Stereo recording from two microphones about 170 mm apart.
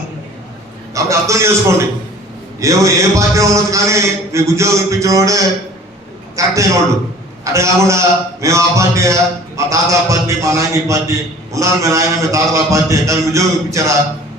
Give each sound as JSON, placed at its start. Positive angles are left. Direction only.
{"t": 0.9, "sound": "a man's voice", "side_deg": -15}